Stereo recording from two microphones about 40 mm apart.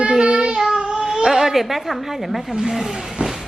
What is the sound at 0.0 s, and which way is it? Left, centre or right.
Child singing, right.